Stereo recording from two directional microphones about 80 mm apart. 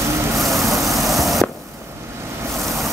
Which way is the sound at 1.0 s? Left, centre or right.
Centre.